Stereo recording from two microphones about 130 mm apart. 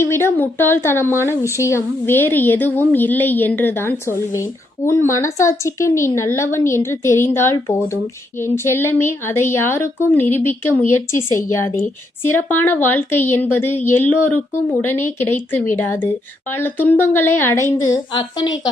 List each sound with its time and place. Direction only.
0.0 s a woman's voice: 20° left (ahead or behind)
18.1 s a woman's voice: 35° left (ahead or behind)